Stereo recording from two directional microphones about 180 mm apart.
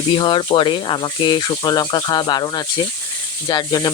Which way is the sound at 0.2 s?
25° left (ahead or behind).